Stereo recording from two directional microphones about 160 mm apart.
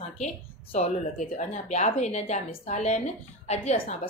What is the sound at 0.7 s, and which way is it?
Speech, 45° left (ahead or behind).